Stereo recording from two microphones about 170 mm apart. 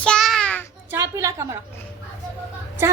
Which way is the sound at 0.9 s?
20° right (ahead or behind).